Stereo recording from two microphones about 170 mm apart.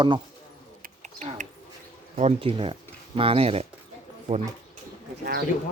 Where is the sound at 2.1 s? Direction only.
35° right (ahead or behind).